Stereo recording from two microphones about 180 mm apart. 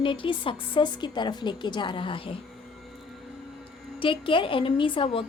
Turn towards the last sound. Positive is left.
turn(degrees=30)  # may be behind; listen again after turning